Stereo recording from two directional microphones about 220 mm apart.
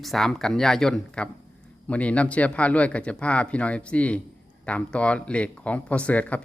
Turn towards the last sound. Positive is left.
turn(degrees=5)  # may be behind; listen again after turning